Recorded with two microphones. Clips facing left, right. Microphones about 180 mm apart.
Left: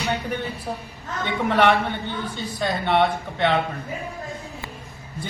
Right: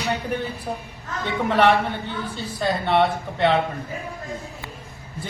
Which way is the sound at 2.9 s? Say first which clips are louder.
Even; centre (ahead or behind).